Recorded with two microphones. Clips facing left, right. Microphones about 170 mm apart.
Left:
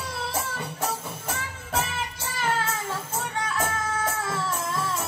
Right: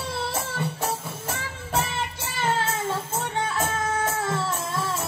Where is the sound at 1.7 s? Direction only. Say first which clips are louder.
Right 2 dB; 30° right (ahead or behind).